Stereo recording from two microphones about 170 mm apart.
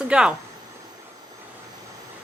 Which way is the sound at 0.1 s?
5° right (ahead or behind).